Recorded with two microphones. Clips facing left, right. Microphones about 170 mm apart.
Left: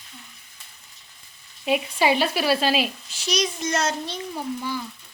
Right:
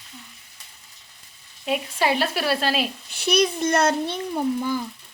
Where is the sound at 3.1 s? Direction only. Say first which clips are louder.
Right 5 dB; 60° right (ahead or behind).